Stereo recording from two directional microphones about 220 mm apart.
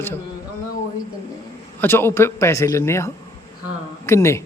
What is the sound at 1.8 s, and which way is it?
Speech, 10° left (ahead or behind).